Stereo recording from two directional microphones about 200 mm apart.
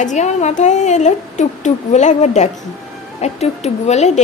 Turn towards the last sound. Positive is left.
turn(degrees=35)  # may be behind; listen again after turning